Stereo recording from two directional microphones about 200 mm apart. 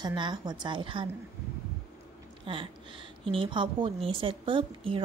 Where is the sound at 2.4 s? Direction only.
25° right (ahead or behind).